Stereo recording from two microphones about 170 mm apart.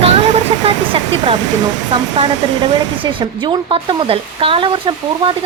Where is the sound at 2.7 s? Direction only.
25° right (ahead or behind).